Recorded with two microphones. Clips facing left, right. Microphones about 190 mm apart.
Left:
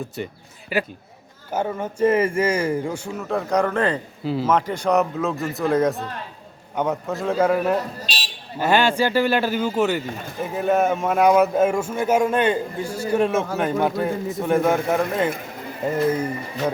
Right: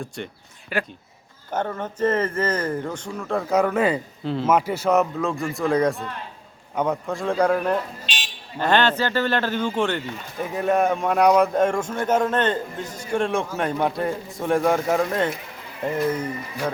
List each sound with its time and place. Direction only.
0.2 s a man's voice: 5° left (ahead or behind)
4.2 s speech: 5° left (ahead or behind)
4.4 s a man's voice: 10° right (ahead or behind)
8.0 s a sound: 35° left (ahead or behind)
8.5 s a man's voice: 10° left (ahead or behind)